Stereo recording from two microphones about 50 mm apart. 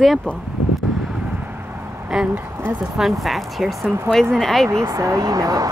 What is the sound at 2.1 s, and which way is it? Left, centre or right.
Speech, centre.